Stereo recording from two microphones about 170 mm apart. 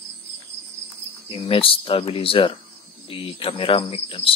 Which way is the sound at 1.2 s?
30° left (ahead or behind).